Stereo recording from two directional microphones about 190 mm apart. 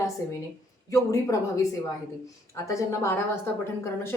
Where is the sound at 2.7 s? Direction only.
15° left (ahead or behind).